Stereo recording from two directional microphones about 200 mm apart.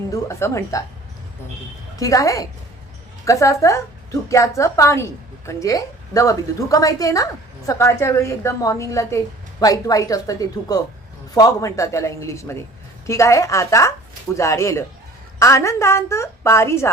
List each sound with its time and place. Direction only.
0.1 s a woman's voice: 15° left (ahead or behind)
2.0 s a woman's voice: 15° left (ahead or behind)